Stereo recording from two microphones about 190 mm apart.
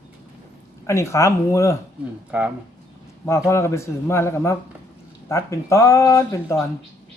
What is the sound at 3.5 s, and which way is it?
Speech, 15° left (ahead or behind).